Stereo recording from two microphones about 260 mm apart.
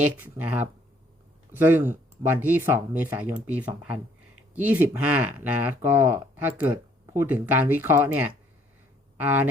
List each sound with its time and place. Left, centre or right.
0.0 s speech: centre